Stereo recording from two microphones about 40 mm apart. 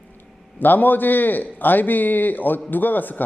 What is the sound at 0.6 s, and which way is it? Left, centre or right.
Speech, left.